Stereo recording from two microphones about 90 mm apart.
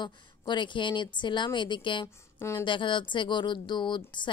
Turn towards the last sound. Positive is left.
turn(degrees=60)  # may be behind; listen again after turning